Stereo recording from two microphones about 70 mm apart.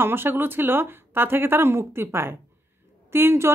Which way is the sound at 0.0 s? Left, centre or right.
Right.